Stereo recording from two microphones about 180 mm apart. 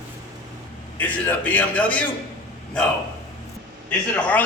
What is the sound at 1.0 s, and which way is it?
A man's voice, 10° left (ahead or behind).